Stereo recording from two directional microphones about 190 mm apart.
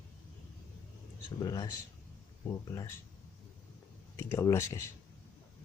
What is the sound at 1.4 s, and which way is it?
Speech, 20° left (ahead or behind).